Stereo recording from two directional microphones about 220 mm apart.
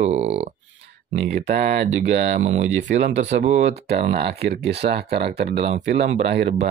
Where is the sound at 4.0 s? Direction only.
45° right (ahead or behind).